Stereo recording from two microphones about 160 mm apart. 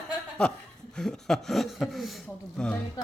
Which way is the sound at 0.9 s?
5° left (ahead or behind).